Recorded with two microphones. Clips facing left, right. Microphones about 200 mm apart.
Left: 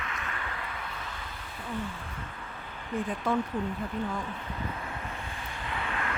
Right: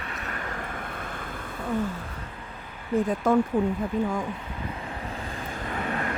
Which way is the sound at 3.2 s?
50° right (ahead or behind).